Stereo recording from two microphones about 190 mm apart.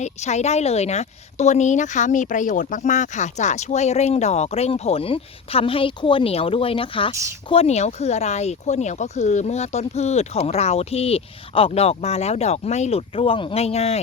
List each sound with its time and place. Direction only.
0.0 s a woman's voice: 35° left (ahead or behind)